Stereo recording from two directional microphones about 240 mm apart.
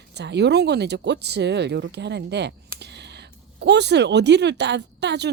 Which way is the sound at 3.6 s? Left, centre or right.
Right.